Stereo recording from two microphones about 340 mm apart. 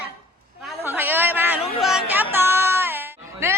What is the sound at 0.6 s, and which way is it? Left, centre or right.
A man's voice, centre.